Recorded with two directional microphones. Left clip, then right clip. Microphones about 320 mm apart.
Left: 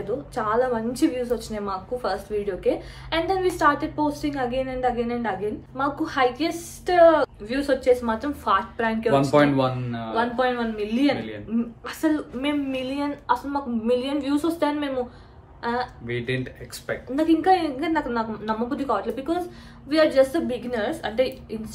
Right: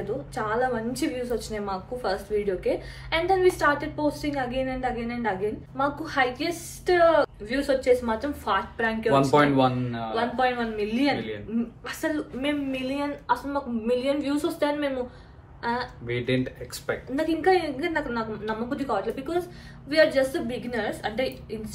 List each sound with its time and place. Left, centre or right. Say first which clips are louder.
0.3 s a woman's voice: left 4 dB; centre
9.3 s speech: left 1 dB; centre
10.1 s a woman's voice: left 2 dB; centre
16.1 s speech: right 4 dB; centre
17.1 s a woman's voice: left 4 dB; centre